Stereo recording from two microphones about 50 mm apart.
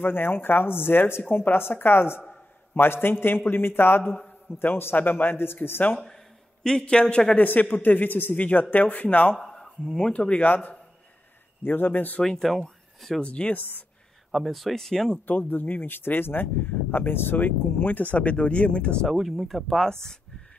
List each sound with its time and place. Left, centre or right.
0.0 s a man's voice: left
4.9 s speech: left
5.9 s speech: centre
7.3 s speech: left
9.4 s a sound: centre
10.1 s speech: left
10.4 s speech: left
12.2 s speech: centre
13.2 s speech: left
13.6 s speech: left
14.3 s speech: centre
15.2 s speech: left
17.4 s speech: left; by 19.0 s centre
19.0 s speech: centre